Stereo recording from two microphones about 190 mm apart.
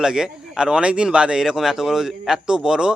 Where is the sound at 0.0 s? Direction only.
5° right (ahead or behind).